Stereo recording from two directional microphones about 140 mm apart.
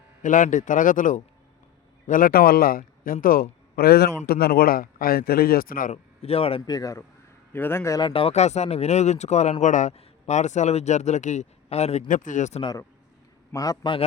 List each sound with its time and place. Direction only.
0.2 s a man's voice: 65° left (ahead or behind)
2.0 s a man's voice: 80° left
5.9 s a man's voice: 45° left (ahead or behind)
6.7 s a man's voice: 25° left (ahead or behind)
8.0 s speech: 40° left (ahead or behind); by 12.6 s 55° left (ahead or behind)
13.5 s a man's voice: 25° left (ahead or behind)